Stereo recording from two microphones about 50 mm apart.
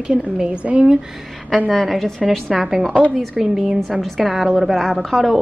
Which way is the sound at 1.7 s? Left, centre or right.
Centre.